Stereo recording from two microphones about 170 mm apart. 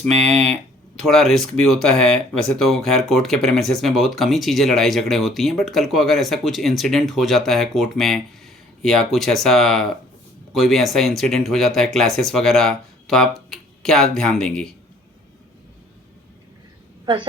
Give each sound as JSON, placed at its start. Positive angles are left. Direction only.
{"t": 0.0, "sound": "speech", "side_deg": -45}
{"t": 0.5, "sound": "speech", "side_deg": 0}